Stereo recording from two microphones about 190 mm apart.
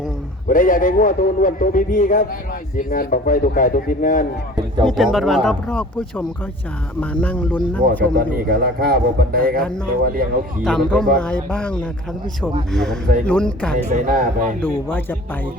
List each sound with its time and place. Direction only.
0.4 s a man's voice: 45° left (ahead or behind)
4.9 s speech: centre (ahead or behind)
8.1 s a man's voice: 50° right (ahead or behind)
10.6 s speech: 5° left (ahead or behind)
13.9 s a man's voice: 45° right (ahead or behind)
14.6 s speech: 10° left (ahead or behind)